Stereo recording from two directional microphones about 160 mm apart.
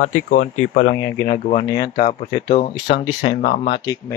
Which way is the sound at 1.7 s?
25° left (ahead or behind).